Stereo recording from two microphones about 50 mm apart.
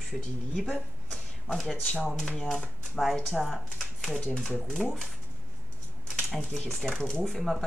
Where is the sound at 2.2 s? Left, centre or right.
Centre.